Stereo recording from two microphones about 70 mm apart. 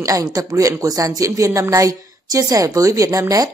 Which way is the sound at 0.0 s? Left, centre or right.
Right.